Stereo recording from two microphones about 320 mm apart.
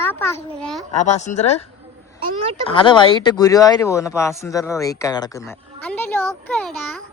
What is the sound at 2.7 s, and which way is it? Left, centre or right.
A child's voice, centre.